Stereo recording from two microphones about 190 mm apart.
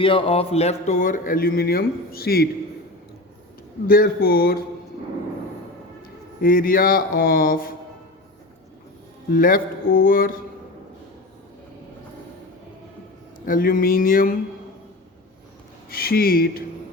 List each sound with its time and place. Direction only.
0.0 s speech: 30° left (ahead or behind); by 2.5 s 55° left (ahead or behind)
3.8 s speech: 50° left (ahead or behind)
6.4 s speech: 50° left (ahead or behind)
9.3 s speech: 45° left (ahead or behind)
13.4 s speech: 50° left (ahead or behind)
15.9 s speech: 50° left (ahead or behind)